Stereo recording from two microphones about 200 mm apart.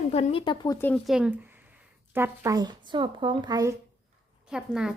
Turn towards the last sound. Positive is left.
turn(degrees=-5)  # may be behind; listen again after turning